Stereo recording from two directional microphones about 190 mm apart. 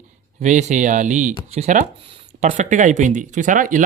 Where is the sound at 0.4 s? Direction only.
40° right (ahead or behind).